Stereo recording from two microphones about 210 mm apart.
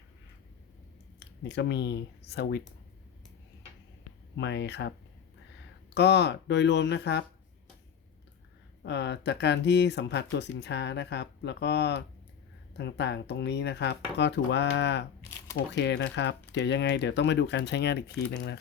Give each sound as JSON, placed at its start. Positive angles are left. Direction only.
{"t": 1.5, "sound": "speech", "side_deg": 55}
{"t": 4.4, "sound": "speech", "side_deg": 55}
{"t": 8.8, "sound": "speech", "side_deg": 55}